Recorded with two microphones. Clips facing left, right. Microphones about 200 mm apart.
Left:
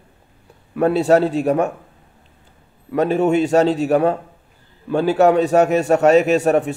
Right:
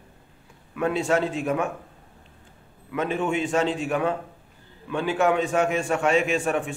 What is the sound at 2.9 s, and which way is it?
A man's voice, 40° left (ahead or behind).